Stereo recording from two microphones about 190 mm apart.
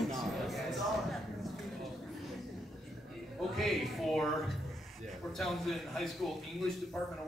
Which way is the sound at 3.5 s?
Centre (ahead or behind).